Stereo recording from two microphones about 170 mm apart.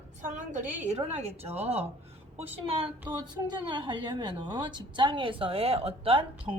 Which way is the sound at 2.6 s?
35° right (ahead or behind).